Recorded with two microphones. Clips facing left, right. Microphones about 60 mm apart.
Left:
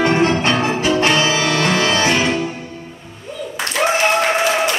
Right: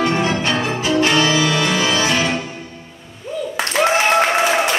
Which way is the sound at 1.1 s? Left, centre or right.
Left.